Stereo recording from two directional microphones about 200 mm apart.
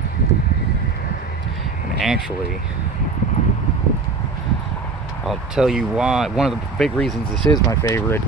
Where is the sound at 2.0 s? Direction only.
Centre (ahead or behind).